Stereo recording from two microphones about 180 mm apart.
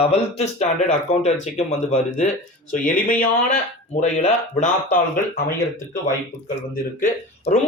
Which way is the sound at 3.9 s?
40° left (ahead or behind).